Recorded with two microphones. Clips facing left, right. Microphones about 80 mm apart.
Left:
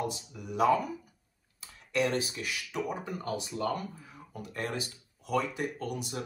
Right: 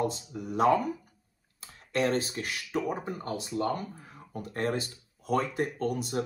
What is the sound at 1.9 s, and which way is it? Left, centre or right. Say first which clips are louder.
Speech: right 2 dB; right.